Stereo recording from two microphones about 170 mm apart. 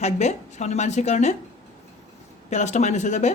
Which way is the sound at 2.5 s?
45° left (ahead or behind).